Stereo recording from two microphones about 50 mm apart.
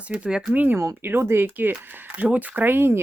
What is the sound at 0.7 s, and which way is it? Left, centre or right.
Speech, right.